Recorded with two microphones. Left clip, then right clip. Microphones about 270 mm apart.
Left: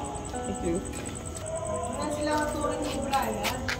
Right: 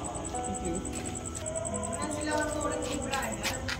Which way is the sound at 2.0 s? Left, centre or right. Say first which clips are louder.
Left 3 dB; left.